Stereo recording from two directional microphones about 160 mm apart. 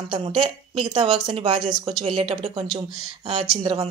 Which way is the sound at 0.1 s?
35° right (ahead or behind).